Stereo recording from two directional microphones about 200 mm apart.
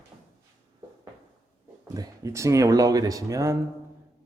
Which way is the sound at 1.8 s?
20° right (ahead or behind).